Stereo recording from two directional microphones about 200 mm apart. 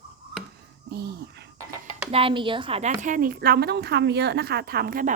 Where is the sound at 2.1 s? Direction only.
25° right (ahead or behind).